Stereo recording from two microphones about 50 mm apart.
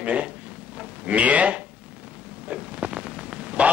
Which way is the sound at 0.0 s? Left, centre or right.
Right.